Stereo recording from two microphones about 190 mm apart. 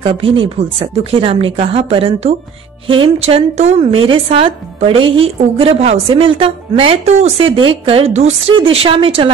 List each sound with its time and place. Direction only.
0.0 s a woman's voice: 30° right (ahead or behind)